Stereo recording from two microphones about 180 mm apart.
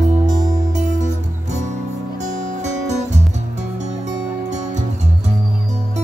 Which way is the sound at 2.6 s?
40° right (ahead or behind).